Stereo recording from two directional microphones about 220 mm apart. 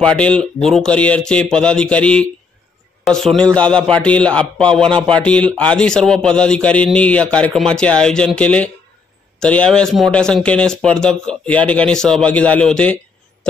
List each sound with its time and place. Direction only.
0.0 s a man's voice: 5° left (ahead or behind)